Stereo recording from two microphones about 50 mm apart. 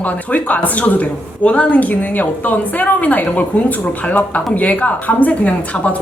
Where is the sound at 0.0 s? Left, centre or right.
Left.